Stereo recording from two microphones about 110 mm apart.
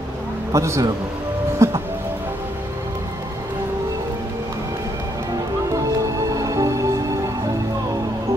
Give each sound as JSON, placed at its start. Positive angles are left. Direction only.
{"t": 0.5, "sound": "a man's voice", "side_deg": -30}
{"t": 1.6, "sound": "music", "side_deg": -25}
{"t": 6.3, "sound": "music", "side_deg": -30}